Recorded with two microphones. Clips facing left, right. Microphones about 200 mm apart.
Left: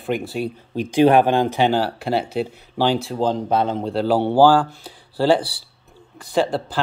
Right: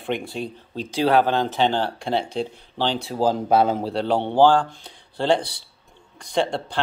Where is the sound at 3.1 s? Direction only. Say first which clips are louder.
Right 1 dB; 5° right (ahead or behind).